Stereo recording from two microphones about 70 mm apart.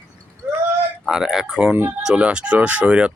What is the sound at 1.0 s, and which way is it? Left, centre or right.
Speech, centre.